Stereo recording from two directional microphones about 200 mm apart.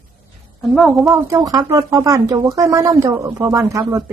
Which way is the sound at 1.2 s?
15° right (ahead or behind).